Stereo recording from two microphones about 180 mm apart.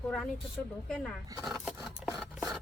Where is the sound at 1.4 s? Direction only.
Centre (ahead or behind).